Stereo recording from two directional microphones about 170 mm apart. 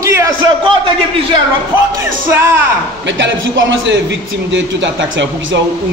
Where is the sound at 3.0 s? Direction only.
90° right.